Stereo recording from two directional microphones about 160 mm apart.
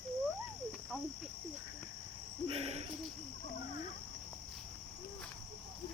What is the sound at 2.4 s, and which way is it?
Cricket, 40° right (ahead or behind).